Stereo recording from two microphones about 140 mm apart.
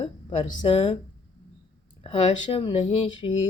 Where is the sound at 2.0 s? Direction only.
40° left (ahead or behind).